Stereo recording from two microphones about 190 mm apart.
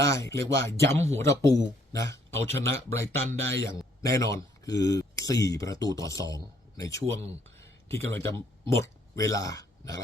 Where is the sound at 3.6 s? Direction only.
15° left (ahead or behind).